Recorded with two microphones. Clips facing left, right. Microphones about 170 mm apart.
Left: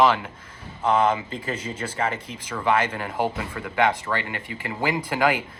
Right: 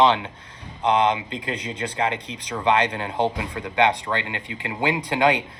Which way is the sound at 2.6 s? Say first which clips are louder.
Right 2 dB; 20° right (ahead or behind).